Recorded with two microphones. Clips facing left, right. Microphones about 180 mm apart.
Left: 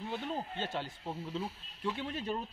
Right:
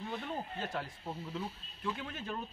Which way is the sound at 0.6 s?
25° left (ahead or behind).